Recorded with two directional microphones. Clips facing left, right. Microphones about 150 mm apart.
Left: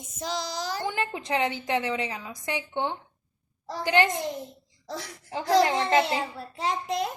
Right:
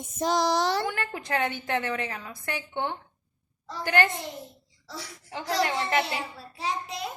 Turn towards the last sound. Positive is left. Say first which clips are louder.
# left 4 dB
turn(degrees=55)  # may be behind; listen again after turning